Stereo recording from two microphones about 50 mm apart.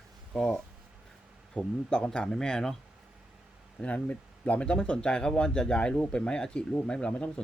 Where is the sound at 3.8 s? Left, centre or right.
Left.